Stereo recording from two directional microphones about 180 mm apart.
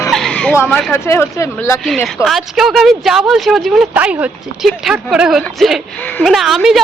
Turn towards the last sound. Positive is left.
turn(degrees=0)  # may be behind; listen again after turning